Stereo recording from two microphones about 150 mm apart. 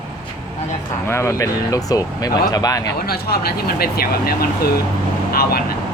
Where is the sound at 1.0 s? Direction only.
20° left (ahead or behind).